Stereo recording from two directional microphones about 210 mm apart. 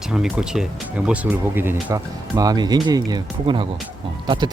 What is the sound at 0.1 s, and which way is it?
Speech, centre (ahead or behind).